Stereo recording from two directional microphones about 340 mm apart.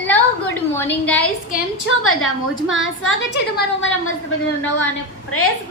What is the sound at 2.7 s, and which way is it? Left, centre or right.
Speech, left.